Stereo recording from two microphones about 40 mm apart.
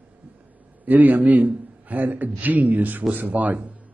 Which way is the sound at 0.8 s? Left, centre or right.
Right.